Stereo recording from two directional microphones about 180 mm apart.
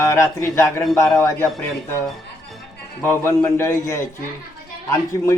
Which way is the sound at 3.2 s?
15° left (ahead or behind).